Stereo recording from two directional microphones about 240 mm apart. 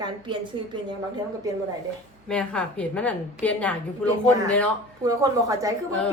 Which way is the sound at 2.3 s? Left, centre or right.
Centre.